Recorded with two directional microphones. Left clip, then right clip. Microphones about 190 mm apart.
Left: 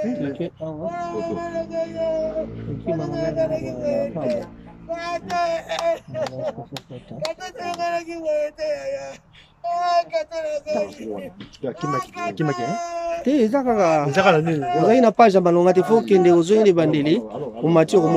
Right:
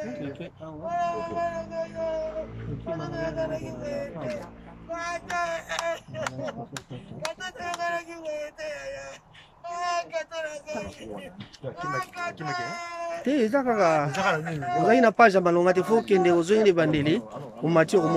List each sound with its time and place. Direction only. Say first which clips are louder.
0.0 s child singing: left 9 dB; 25° left (ahead or behind)
11.8 s speech: left 4 dB; 15° left (ahead or behind)